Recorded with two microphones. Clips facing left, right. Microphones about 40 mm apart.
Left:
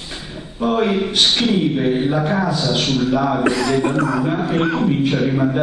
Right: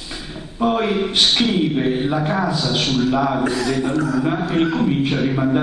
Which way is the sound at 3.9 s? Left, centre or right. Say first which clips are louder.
Left 1 dB; left.